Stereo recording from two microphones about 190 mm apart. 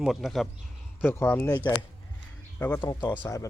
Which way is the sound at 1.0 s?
10° left (ahead or behind).